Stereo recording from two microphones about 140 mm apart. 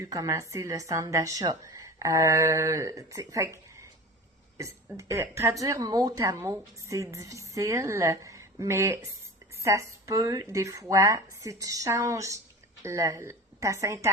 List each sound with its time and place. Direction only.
0.0 s a woman's voice: 25° right (ahead or behind)